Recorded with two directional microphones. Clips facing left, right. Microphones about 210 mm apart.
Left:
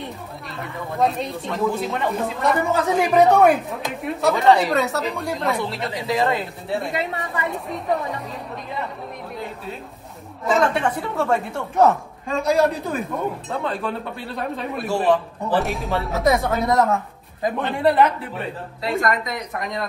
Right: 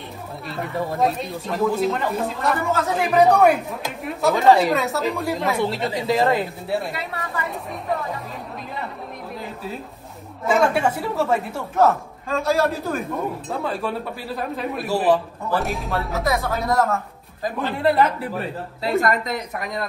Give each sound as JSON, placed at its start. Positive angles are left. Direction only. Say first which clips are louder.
{"t": 0.5, "sound": "speech", "louder": "right 6 dB", "side_deg": 0}
{"t": 10.4, "sound": "speech", "louder": "right 1 dB", "side_deg": -5}
{"t": 16.8, "sound": "a sound", "louder": "left 2 dB", "side_deg": 15}
{"t": 17.6, "sound": "speech", "louder": "left 1 dB", "side_deg": 0}